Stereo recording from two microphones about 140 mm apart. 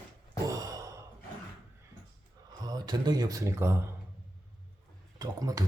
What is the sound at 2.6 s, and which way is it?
Speech, 30° right (ahead or behind).